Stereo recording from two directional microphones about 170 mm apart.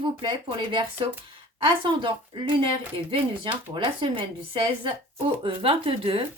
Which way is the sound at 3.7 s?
30° right (ahead or behind).